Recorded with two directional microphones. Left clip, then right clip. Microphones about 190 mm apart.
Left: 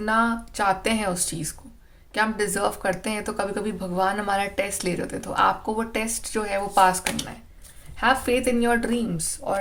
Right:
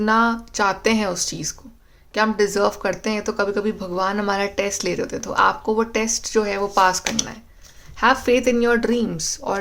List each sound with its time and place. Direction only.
0.0 s speech: 30° right (ahead or behind)